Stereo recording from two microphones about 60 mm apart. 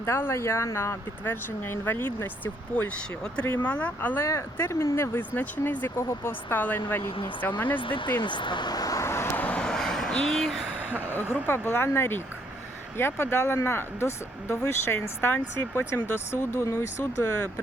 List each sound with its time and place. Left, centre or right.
0.0 s speech: left
4.2 s speech: left
5.4 s speech: left
6.0 s speech: left
6.5 s speech: left
8.7 s vehicle: left
9.0 s vehicle: left
9.4 s vehicle: left
9.6 s a sound: centre
11.4 s speech: left